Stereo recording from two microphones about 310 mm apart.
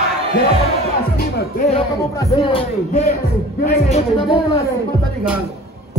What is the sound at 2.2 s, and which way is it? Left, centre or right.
Speech, centre.